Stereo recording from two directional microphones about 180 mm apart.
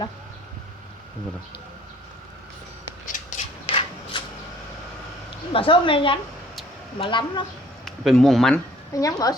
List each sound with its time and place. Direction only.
3.1 s a sound: 45° left (ahead or behind)
3.7 s rub: 30° left (ahead or behind)
5.5 s a woman's voice: 30° left (ahead or behind)
7.9 s speech: centre (ahead or behind)
8.9 s a woman's voice: 20° left (ahead or behind)